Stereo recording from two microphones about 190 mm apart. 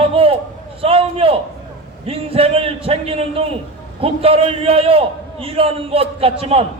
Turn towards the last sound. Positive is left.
turn(degrees=-30)  # may be behind; listen again after turning